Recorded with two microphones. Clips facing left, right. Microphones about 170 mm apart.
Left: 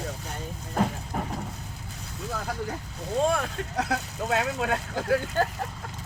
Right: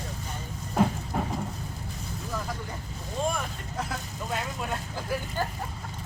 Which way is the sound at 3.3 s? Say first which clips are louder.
Left 6 dB; 80° left.